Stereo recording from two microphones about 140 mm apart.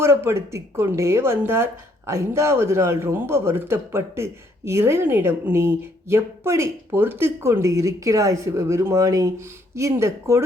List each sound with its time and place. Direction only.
0.0 s speech: 20° right (ahead or behind)